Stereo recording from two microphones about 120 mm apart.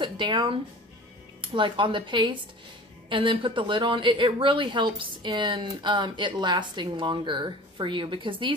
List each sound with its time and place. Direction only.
0.0 s a woman's voice: 40° right (ahead or behind)